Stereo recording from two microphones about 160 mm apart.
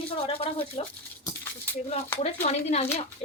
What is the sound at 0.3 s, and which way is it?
Speech, 35° left (ahead or behind).